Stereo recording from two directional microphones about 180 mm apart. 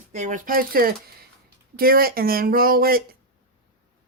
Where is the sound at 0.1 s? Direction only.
45° right (ahead or behind).